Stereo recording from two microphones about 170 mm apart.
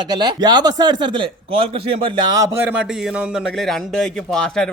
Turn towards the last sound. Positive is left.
turn(degrees=5)  # may be behind; listen again after turning